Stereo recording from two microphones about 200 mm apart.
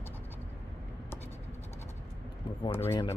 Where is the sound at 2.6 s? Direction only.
10° left (ahead or behind).